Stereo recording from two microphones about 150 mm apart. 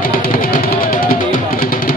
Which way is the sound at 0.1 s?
70° left (ahead or behind).